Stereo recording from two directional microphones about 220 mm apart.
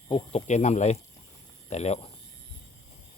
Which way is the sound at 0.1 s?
30° left (ahead or behind).